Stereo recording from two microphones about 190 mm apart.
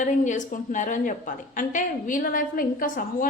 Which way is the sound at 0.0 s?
40° left (ahead or behind).